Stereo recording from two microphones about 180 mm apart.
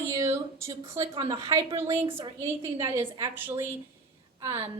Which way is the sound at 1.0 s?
30° right (ahead or behind).